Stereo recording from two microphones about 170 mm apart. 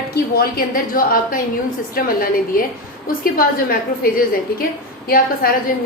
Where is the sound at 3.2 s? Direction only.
60° left (ahead or behind).